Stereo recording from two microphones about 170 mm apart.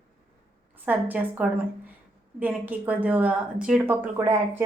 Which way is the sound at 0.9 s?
10° right (ahead or behind).